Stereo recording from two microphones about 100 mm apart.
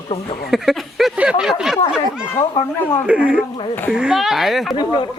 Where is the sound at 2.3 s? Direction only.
25° left (ahead or behind).